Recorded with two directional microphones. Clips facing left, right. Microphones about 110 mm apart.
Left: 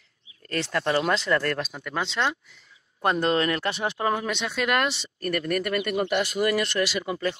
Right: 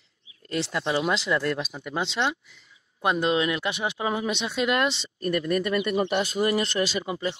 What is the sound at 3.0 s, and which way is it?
Speech, 10° right (ahead or behind).